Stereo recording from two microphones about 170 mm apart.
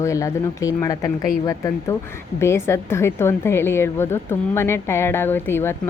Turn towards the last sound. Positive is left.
turn(degrees=15)  # may be behind; listen again after turning